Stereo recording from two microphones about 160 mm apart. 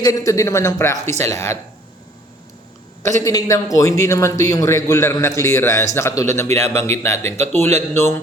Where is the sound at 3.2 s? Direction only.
20° left (ahead or behind).